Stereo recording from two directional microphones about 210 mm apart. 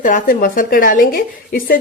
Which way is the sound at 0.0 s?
40° left (ahead or behind).